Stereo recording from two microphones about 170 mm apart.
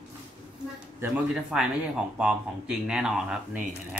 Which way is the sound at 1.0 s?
5° right (ahead or behind).